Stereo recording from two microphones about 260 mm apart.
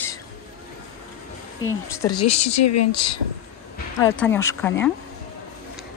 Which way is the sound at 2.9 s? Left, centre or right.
Centre.